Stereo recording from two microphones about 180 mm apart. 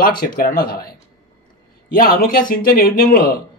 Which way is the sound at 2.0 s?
55° left (ahead or behind).